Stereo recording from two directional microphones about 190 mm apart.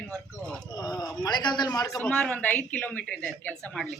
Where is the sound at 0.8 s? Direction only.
20° left (ahead or behind).